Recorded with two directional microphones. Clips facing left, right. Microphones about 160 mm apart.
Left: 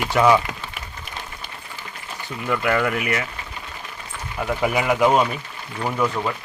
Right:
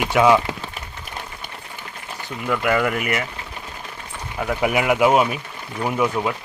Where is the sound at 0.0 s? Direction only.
5° right (ahead or behind).